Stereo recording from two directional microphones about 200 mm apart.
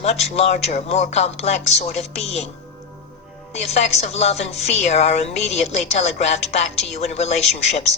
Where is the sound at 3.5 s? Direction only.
30° left (ahead or behind).